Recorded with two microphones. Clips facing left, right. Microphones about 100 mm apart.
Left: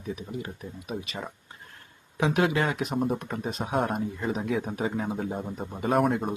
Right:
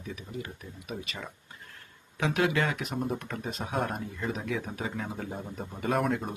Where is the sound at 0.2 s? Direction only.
25° left (ahead or behind).